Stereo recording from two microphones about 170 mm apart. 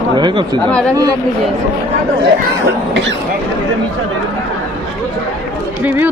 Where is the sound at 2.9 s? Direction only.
90° right.